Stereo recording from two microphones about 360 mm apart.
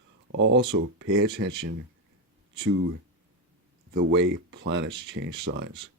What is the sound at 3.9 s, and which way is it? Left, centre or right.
Speech, right.